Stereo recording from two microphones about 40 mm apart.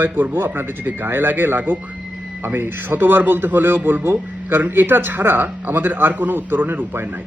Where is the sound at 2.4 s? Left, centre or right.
Right.